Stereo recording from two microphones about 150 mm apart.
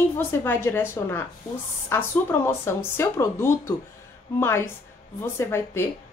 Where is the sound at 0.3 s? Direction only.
15° left (ahead or behind).